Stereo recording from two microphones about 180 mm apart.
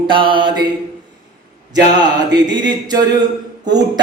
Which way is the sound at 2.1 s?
25° right (ahead or behind).